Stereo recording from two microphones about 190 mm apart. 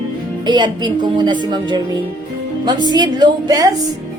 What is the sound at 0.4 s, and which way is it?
Speech, 25° right (ahead or behind).